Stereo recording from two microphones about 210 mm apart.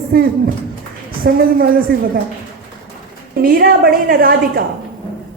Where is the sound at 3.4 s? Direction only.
45° right (ahead or behind).